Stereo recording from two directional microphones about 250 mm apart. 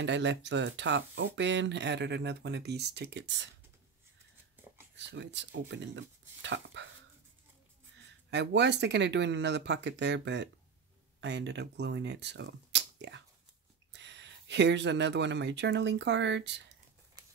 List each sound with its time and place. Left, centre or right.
0.0 s speech: right
4.9 s speech: right
8.3 s speech: right